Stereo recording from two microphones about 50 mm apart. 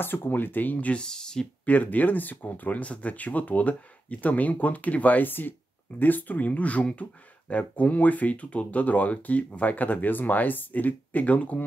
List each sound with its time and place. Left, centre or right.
0.0 s speech: left
1.0 s speech: centre
1.7 s speech: left